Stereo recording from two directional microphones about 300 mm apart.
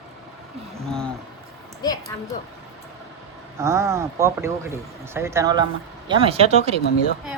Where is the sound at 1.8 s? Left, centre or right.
Centre.